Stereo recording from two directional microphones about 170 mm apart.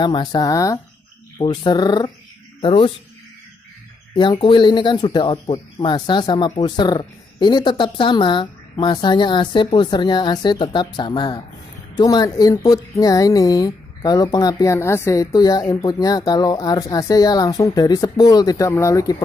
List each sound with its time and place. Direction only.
0.0 s speech: 25° left (ahead or behind)
4.1 s speech: 30° left (ahead or behind)